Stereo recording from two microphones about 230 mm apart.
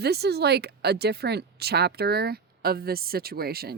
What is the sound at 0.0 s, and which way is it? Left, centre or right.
Speech, right.